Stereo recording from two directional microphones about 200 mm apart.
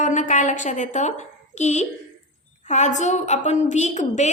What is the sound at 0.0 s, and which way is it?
A woman's voice, 35° left (ahead or behind).